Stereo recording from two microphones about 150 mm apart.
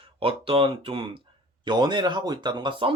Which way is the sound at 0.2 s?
40° right (ahead or behind).